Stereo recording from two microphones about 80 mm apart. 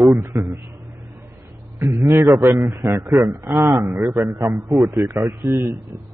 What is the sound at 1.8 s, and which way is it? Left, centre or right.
A man's voice, right.